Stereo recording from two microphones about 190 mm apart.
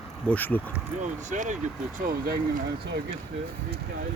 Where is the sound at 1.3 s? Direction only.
40° right (ahead or behind).